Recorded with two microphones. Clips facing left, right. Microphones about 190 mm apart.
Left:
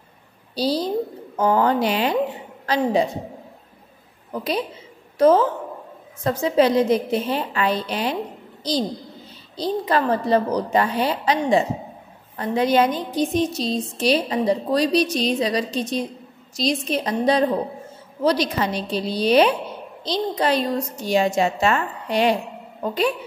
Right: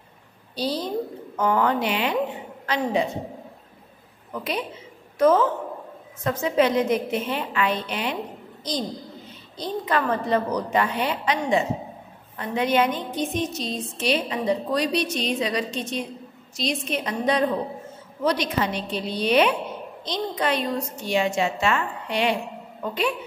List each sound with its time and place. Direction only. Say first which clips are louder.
0.6 s a woman's voice: left 4 dB; 35° left (ahead or behind)
4.3 s a woman's voice: left 4 dB; 35° left (ahead or behind)